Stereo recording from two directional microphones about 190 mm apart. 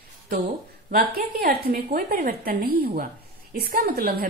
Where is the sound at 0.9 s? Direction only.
55° right (ahead or behind).